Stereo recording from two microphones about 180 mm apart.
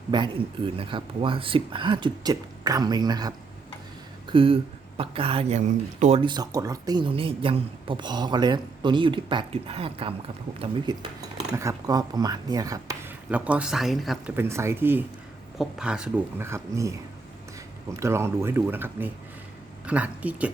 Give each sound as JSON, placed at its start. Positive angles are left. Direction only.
{"t": 0.1, "sound": "speech", "side_deg": -25}
{"t": 14.3, "sound": "speech", "side_deg": -15}
{"t": 18.0, "sound": "speech", "side_deg": -15}